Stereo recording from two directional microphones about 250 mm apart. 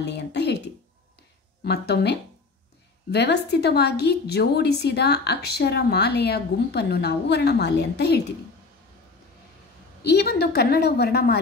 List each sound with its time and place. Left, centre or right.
0.0 s speech: left
1.6 s a woman's voice: left
10.1 s a woman's voice: left